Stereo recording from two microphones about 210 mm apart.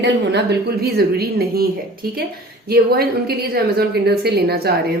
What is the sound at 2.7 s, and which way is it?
A woman's voice, 45° right (ahead or behind).